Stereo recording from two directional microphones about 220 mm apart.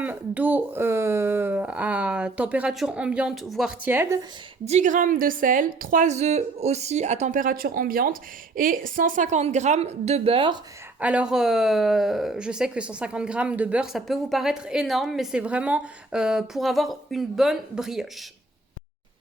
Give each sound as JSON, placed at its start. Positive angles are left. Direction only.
{"t": 0.0, "sound": "speech", "side_deg": -5}
{"t": 4.6, "sound": "a woman's voice", "side_deg": -30}
{"t": 11.0, "sound": "speech", "side_deg": -5}